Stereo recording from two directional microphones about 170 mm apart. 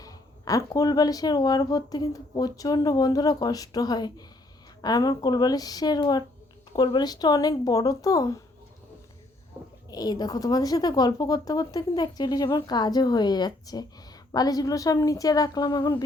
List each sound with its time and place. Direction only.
0.0 s speech: 20° left (ahead or behind)
9.9 s speech: 25° left (ahead or behind)